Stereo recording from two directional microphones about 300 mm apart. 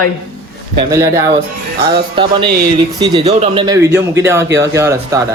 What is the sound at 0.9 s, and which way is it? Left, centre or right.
Speech, centre.